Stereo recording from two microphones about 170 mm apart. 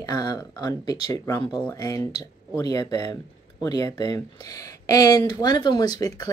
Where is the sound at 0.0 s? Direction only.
25° left (ahead or behind).